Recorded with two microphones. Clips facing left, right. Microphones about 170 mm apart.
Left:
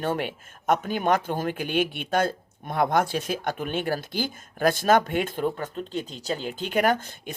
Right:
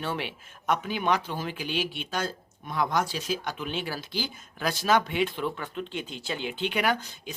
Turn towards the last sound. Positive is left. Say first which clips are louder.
# left 5 dB
turn(degrees=50)  # may be behind; listen again after turning